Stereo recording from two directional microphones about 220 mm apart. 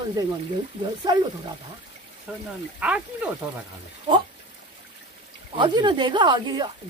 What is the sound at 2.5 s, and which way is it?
Speech, 5° right (ahead or behind).